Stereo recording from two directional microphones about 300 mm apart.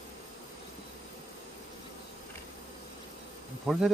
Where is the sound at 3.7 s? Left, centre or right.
Centre.